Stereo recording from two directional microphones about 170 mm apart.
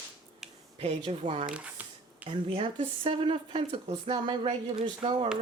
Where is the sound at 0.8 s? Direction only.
35° right (ahead or behind).